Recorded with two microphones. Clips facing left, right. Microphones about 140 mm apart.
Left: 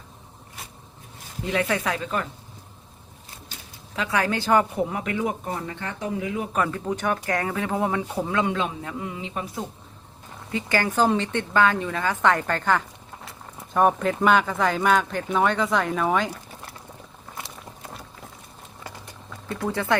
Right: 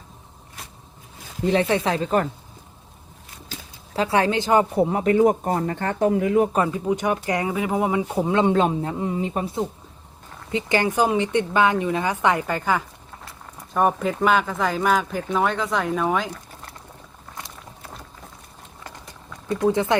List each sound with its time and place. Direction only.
1.5 s speech: 30° right (ahead or behind)
3.9 s a woman's voice: 30° right (ahead or behind)
4.7 s speech: 35° right (ahead or behind)
6.7 s speech: 15° right (ahead or behind)
8.5 s speech: 35° right (ahead or behind)
10.5 s speech: 20° right (ahead or behind); by 16.4 s centre (ahead or behind)
19.5 s a woman's voice: 20° right (ahead or behind)